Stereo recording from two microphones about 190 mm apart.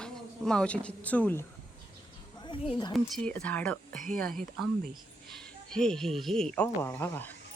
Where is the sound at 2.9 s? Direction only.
5° left (ahead or behind).